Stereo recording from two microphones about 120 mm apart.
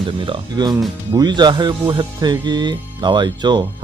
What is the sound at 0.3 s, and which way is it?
Speech, 35° right (ahead or behind).